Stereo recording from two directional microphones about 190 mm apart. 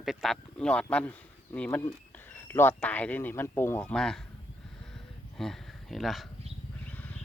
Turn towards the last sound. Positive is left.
turn(degrees=10)  # may be behind; listen again after turning